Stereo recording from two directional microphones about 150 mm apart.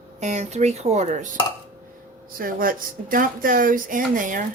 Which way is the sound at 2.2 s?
70° right (ahead or behind).